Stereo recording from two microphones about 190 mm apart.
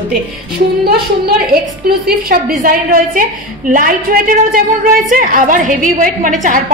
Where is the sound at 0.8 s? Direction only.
55° right (ahead or behind).